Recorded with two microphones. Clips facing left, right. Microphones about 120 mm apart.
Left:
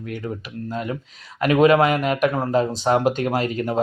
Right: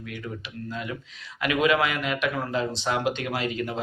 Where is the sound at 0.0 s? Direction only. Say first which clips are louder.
Left 6 dB; 40° left (ahead or behind).